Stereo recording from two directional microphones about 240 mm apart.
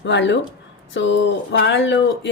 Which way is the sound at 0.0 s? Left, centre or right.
Left.